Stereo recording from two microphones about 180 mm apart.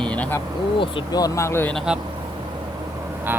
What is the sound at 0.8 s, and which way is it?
Speech, 25° left (ahead or behind).